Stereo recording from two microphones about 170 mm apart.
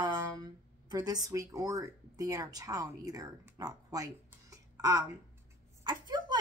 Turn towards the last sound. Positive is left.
turn(degrees=-25)  # may be behind; listen again after turning